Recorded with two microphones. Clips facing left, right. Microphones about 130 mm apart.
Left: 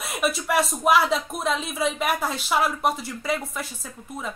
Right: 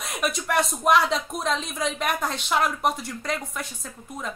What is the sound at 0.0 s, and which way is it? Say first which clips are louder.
A woman's voice: left 2 dB; centre (ahead or behind).